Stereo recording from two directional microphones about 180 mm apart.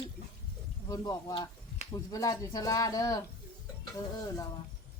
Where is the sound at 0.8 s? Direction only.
20° left (ahead or behind).